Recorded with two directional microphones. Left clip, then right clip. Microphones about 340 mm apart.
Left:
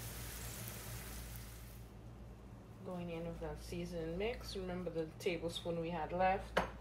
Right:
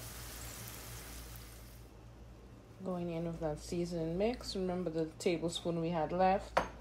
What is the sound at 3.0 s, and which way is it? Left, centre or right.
Speech, centre.